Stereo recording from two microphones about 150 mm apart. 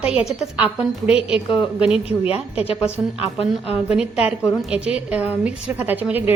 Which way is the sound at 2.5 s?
40° left (ahead or behind).